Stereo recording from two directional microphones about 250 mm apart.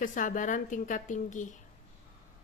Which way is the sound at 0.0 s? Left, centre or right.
Left.